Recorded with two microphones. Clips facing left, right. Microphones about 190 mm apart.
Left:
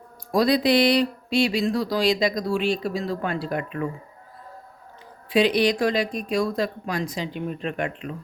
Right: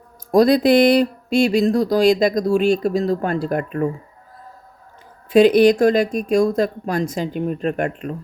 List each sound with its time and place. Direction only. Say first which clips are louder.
0.3 s speech: right 6 dB; 45° right (ahead or behind)
5.3 s speech: right 8 dB; 50° right (ahead or behind)